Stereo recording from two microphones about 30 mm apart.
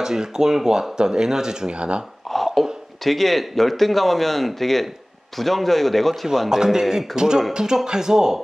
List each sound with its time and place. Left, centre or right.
0.0 s speech: right
1.8 s speech: right
2.3 s cough: centre
3.0 s speech: centre
6.5 s a man's voice: centre
7.2 s speech: right